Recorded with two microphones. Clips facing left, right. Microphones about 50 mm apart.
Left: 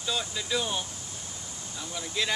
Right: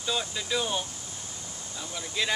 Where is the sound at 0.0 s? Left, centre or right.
Centre.